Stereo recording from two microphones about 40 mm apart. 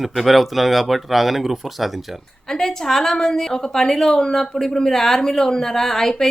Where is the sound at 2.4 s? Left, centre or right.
Centre.